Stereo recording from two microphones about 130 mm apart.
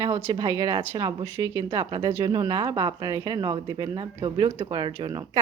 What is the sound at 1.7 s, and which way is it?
Speech, 35° right (ahead or behind).